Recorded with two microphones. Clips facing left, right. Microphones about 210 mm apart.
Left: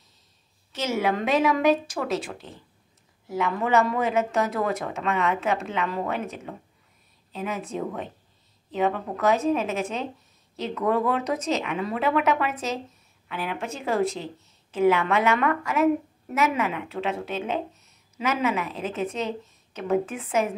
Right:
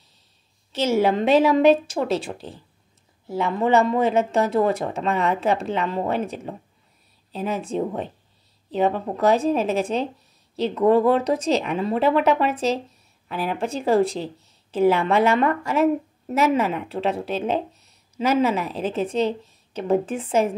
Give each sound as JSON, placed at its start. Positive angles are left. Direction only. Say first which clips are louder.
{"t": 0.7, "sound": "speech", "louder": "right 6 dB", "side_deg": -30}